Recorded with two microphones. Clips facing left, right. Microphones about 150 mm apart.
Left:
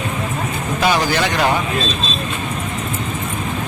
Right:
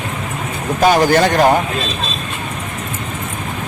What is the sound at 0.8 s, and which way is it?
Speech, 50° right (ahead or behind).